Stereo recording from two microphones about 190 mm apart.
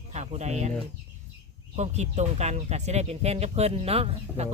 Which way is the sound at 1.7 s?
35° right (ahead or behind).